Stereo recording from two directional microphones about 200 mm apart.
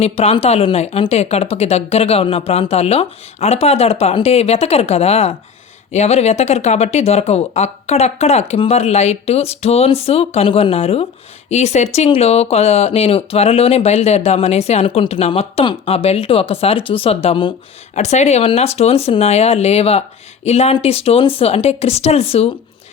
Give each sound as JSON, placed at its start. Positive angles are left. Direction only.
{"t": 0.0, "sound": "speech", "side_deg": 30}
{"t": 17.9, "sound": "speech", "side_deg": 35}